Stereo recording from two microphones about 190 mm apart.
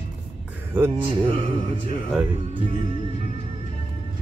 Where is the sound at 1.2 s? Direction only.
30° right (ahead or behind).